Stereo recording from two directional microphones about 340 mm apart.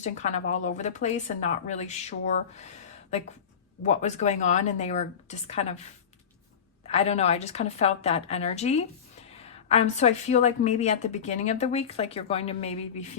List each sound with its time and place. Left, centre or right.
0.0 s a woman's voice: centre
3.8 s a woman's voice: centre
6.8 s a woman's voice: centre